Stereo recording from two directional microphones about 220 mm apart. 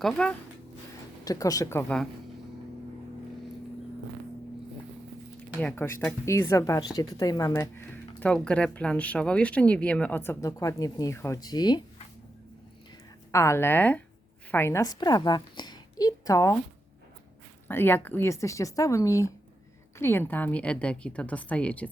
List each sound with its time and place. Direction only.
0.0 s a woman's voice: centre (ahead or behind)
1.2 s speech: 15° left (ahead or behind)
5.5 s speech: 10° left (ahead or behind)
13.3 s a woman's voice: 15° left (ahead or behind)
17.7 s a woman's voice: 10° left (ahead or behind)